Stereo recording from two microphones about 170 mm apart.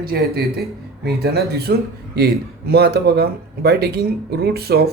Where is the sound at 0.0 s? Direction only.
65° right (ahead or behind).